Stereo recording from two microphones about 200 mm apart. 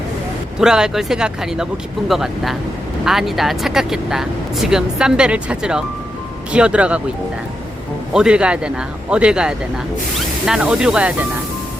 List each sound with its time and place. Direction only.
0.6 s speech: 5° right (ahead or behind)
8.1 s speech: 5° right (ahead or behind)